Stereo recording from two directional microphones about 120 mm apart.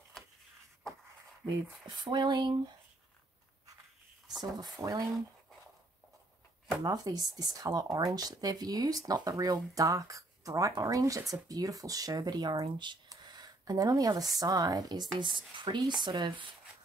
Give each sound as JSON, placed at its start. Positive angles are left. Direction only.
{"t": 1.4, "sound": "speech", "side_deg": -40}
{"t": 4.4, "sound": "speech", "side_deg": -35}
{"t": 6.8, "sound": "speech", "side_deg": -35}